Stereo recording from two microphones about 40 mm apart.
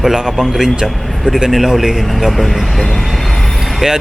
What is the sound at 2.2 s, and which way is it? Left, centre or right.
Speech, centre.